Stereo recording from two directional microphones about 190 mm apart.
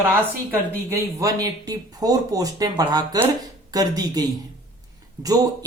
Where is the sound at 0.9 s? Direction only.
15° right (ahead or behind).